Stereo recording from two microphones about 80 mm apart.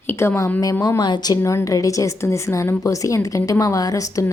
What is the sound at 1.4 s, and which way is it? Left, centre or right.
Speech, left.